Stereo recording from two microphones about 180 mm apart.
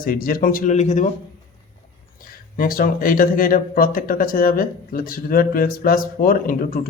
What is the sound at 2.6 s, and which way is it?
Speech, 50° left (ahead or behind).